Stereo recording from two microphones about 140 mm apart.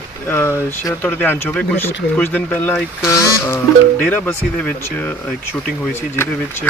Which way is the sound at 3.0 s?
20° left (ahead or behind).